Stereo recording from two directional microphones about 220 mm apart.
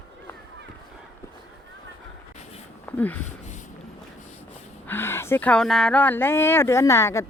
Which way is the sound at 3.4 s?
35° left (ahead or behind).